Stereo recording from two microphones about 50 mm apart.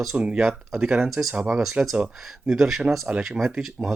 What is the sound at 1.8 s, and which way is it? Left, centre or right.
Speech, right.